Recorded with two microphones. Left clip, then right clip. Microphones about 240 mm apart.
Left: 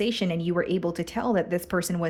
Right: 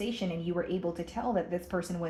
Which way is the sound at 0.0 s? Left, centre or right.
Left.